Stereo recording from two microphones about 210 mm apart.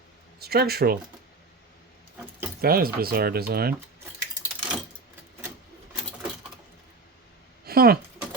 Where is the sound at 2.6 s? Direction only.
45° right (ahead or behind).